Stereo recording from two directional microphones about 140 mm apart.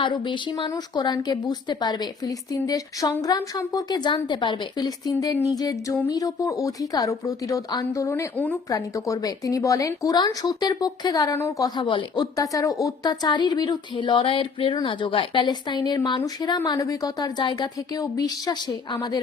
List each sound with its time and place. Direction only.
0.0 s speech: 35° left (ahead or behind); by 8.5 s 15° left (ahead or behind)
8.7 s speech: 25° left (ahead or behind)